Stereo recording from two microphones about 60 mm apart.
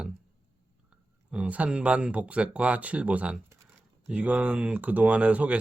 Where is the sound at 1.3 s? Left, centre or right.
Centre.